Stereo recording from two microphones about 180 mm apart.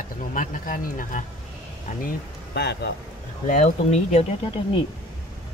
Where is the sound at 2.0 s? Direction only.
65° left (ahead or behind).